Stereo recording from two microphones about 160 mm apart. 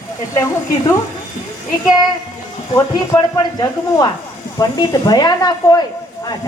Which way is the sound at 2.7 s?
25° left (ahead or behind).